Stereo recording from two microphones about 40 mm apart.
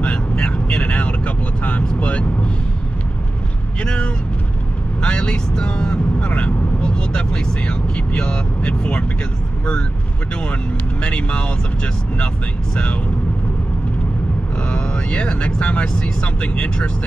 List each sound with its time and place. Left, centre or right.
0.0 s vehicle: left
3.8 s speech: left
10.5 s speech: left
14.7 s speech: left